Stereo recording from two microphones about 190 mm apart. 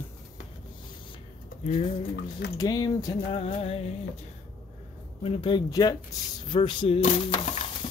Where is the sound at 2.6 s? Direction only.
20° left (ahead or behind).